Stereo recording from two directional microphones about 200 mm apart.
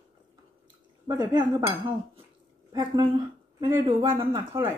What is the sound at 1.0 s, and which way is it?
Speech, 20° right (ahead or behind).